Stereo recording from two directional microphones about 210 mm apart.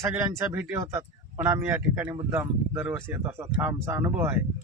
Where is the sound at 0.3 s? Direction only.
10° right (ahead or behind).